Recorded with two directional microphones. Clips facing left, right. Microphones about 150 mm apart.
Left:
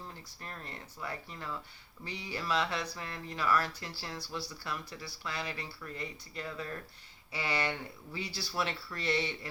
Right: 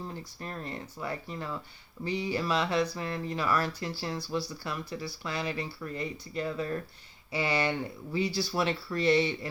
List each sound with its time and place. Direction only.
0.3 s speech: 25° right (ahead or behind)